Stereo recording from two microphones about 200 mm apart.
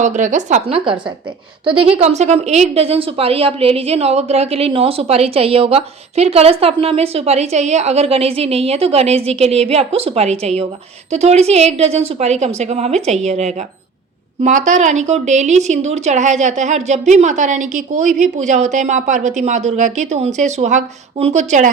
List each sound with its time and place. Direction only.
0.0 s a woman's voice: 40° right (ahead or behind)